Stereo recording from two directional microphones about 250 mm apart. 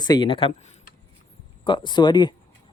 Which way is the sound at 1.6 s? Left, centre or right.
Centre.